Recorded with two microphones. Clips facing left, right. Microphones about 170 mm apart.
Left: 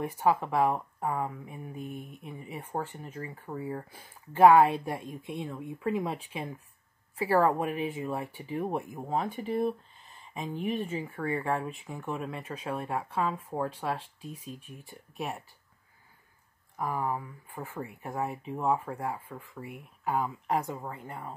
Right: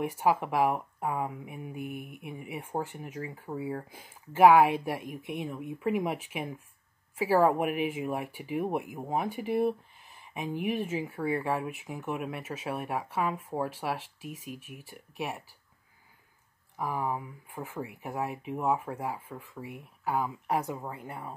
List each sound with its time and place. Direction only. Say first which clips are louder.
0.2 s speech: left 1 dB; 10° right (ahead or behind)
13.9 s speech: right 1 dB; 90° right
16.7 s speech: even; 10° right (ahead or behind)